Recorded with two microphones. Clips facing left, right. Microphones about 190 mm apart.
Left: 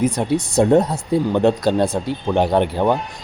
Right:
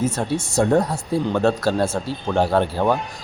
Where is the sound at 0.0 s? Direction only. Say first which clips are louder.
Left 4 dB; 15° left (ahead or behind).